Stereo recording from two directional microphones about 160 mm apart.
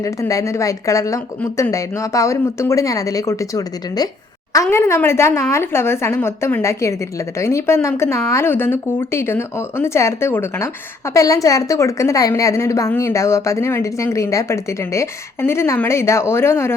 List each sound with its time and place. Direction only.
0.0 s speech: 20° left (ahead or behind)
1.4 s a woman's voice: 10° left (ahead or behind)
1.7 s a woman's voice: 20° left (ahead or behind)